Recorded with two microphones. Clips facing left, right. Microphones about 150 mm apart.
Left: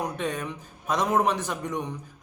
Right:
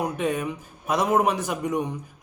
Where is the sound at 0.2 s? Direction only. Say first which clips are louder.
Right 4 dB; 10° right (ahead or behind).